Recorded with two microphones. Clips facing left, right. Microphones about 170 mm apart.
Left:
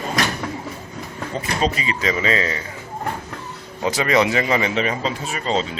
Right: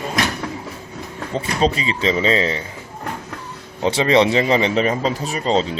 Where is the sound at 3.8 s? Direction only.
30° right (ahead or behind).